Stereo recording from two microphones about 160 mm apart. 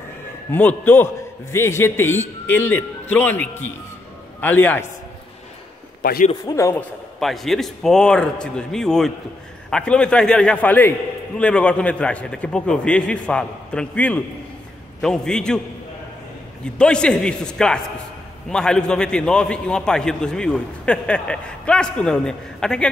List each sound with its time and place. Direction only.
0.5 s a man's voice: 10° left (ahead or behind)
6.4 s a man's voice: 20° left (ahead or behind)
7.2 s a man's voice: centre (ahead or behind)
16.6 s a man's voice: 5° left (ahead or behind)